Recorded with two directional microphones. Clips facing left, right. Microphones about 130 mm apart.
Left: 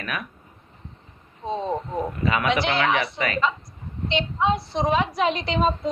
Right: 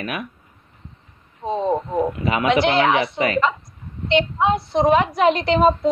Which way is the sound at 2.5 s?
55° right (ahead or behind).